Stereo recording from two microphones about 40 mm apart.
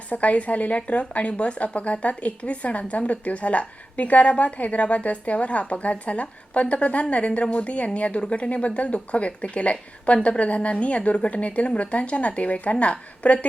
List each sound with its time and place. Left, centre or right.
0.1 s a woman's voice: left